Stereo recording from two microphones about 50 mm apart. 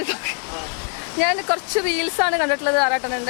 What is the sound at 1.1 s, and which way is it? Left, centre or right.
Speech, left.